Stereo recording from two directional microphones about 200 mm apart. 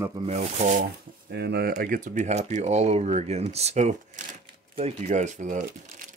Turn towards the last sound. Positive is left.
turn(degrees=-40)  # may be behind; listen again after turning